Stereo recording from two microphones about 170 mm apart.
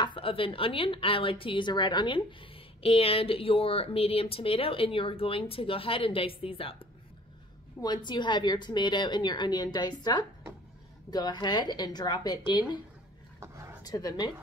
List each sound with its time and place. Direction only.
0.0 s a woman's voice: 30° left (ahead or behind)
13.8 s a woman's voice: 25° left (ahead or behind)